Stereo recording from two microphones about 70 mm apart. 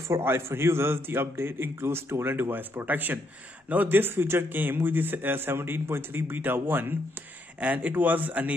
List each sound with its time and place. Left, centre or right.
0.1 s a man's voice: right